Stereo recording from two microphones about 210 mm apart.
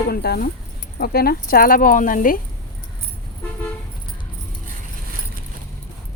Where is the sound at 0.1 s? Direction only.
50° left (ahead or behind).